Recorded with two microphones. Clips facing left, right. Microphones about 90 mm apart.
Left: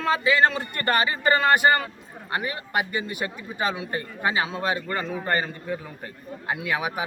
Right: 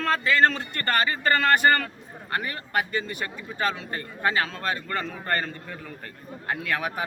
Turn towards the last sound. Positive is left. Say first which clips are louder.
# left 1 dB
turn(degrees=10)  # may be behind; listen again after turning